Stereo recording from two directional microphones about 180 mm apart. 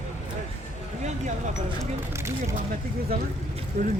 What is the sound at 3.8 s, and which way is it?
Speech, 45° right (ahead or behind).